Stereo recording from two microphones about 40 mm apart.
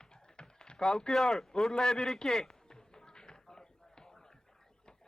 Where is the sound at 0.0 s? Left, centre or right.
Centre.